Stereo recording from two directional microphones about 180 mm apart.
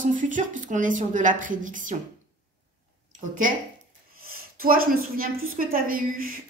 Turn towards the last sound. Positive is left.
turn(degrees=-55)  # may be behind; listen again after turning